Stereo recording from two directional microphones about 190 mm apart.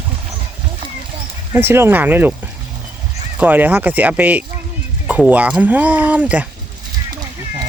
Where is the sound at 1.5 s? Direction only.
10° right (ahead or behind).